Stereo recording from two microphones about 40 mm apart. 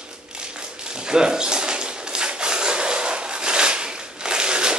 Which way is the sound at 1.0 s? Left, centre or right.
Centre.